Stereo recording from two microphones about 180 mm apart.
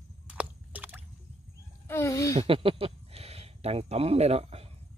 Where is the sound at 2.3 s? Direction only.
30° right (ahead or behind).